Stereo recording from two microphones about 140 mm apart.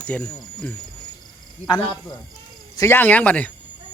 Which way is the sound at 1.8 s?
35° left (ahead or behind).